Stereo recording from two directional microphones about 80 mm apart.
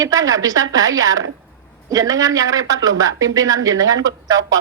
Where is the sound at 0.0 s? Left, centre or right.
Right.